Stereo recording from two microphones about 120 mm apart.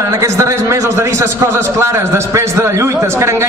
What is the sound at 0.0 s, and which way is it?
A man's voice, 25° right (ahead or behind).